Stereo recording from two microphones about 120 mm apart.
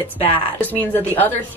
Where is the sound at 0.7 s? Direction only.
15° left (ahead or behind).